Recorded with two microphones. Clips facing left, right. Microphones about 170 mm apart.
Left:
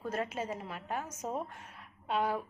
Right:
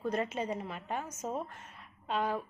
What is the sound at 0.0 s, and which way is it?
A woman's voice, 5° left (ahead or behind).